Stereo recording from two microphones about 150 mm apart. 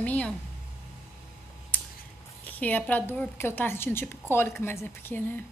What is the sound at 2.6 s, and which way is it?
A woman's voice, 10° left (ahead or behind).